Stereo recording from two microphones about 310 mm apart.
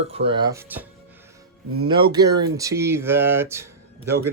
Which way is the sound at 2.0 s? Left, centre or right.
Right.